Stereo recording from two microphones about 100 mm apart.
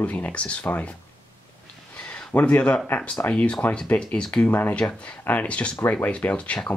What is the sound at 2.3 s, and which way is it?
Speech, 15° left (ahead or behind).